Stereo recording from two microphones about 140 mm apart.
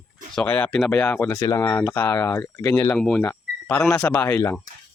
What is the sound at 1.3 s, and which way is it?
Speech, 25° left (ahead or behind).